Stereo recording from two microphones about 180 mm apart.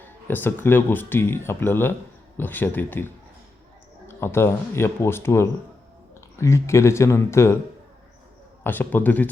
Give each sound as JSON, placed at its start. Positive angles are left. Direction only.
{"t": 0.3, "sound": "speech", "side_deg": 10}
{"t": 4.1, "sound": "speech", "side_deg": 15}
{"t": 8.6, "sound": "speech", "side_deg": 10}